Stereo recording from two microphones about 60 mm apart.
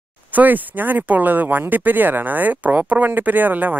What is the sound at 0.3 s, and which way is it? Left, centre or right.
Speech, right.